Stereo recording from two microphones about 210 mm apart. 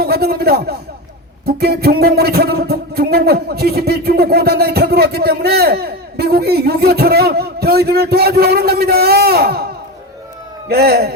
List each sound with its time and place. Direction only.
0.0 s a man's voice: 50° right (ahead or behind)
1.5 s music: 50° right (ahead or behind)
10.7 s music: 50° right (ahead or behind)